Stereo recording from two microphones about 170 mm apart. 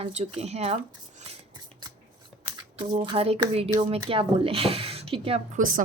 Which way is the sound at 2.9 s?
35° right (ahead or behind).